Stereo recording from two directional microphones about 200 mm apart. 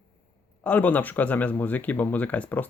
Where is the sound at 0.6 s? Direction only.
5° left (ahead or behind).